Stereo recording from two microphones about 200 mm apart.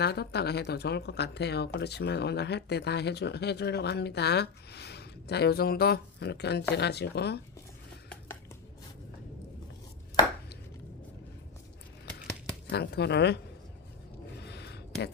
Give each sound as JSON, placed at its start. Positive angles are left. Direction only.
{"t": 0.0, "sound": "speech", "side_deg": 55}
{"t": 12.7, "sound": "speech", "side_deg": 55}
{"t": 14.4, "sound": "a sound", "side_deg": 55}